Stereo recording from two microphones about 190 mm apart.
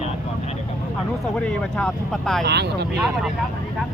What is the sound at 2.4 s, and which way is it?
Speech, 60° right (ahead or behind).